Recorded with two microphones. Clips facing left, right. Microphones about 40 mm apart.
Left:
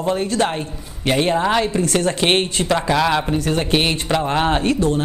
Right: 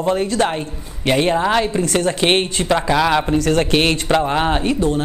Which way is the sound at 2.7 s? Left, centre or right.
Centre.